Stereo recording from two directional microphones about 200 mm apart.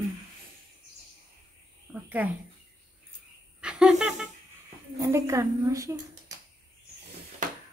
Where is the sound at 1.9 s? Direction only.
10° right (ahead or behind).